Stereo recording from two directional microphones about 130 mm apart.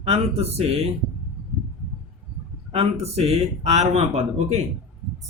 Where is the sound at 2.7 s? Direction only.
50° right (ahead or behind).